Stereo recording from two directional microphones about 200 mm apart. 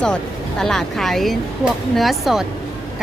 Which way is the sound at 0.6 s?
Centre (ahead or behind).